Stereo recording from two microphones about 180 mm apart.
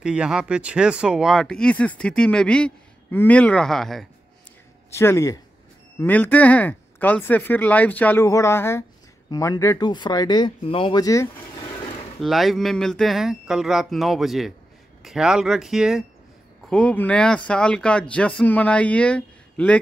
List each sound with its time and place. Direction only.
0.0 s speech: 5° right (ahead or behind)
4.9 s speech: 15° left (ahead or behind)
12.2 s speech: centre (ahead or behind)